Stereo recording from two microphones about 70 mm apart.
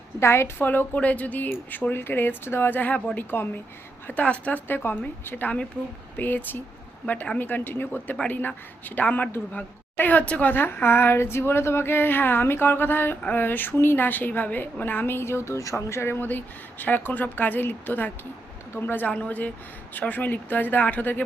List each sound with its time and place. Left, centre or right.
0.2 s a woman's voice: left